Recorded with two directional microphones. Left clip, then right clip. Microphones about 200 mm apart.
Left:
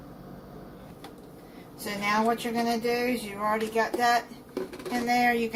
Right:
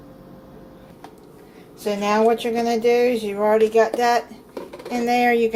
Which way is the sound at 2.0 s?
40° right (ahead or behind).